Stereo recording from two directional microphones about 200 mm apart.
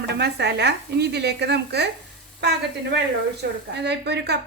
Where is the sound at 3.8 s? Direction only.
55° right (ahead or behind).